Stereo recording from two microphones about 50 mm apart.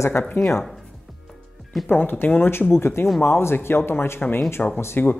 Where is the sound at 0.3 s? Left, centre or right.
Left.